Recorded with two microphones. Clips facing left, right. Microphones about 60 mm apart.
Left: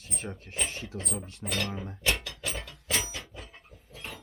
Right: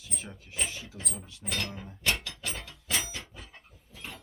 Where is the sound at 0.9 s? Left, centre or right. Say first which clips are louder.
Left 6 dB; centre.